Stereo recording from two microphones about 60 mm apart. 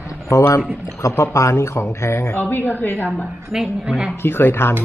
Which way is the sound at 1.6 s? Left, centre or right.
Left.